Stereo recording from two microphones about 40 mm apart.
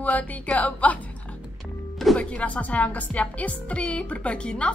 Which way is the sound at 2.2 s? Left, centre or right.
Left.